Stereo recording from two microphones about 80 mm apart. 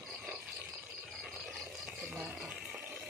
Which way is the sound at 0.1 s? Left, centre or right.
Centre.